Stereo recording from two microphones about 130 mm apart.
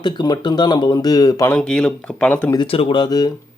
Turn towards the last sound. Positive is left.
turn(degrees=30)  # may be behind; listen again after turning